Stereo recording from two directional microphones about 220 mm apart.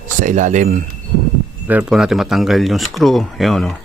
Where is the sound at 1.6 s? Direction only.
5° right (ahead or behind).